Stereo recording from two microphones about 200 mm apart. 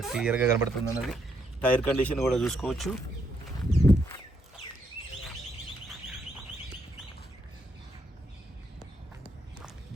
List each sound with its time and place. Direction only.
0.0 s speech: 5° right (ahead or behind)
1.6 s speech: 5° left (ahead or behind)
3.6 s a sound: 20° left (ahead or behind)